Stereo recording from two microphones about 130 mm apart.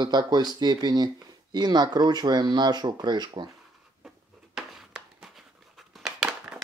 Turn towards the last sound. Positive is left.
turn(degrees=-5)  # may be behind; listen again after turning